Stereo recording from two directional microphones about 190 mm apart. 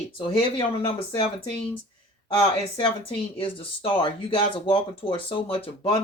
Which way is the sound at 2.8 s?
25° left (ahead or behind).